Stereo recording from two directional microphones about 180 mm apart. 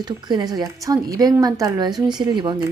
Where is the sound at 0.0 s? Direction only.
20° right (ahead or behind).